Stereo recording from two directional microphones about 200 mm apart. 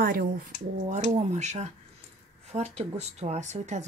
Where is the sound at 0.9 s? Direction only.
35° right (ahead or behind).